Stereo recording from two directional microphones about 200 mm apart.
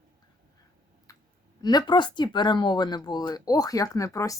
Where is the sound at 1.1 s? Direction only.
15° left (ahead or behind).